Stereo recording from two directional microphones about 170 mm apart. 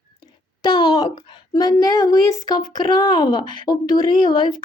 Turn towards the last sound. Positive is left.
turn(degrees=25)  # may be behind; listen again after turning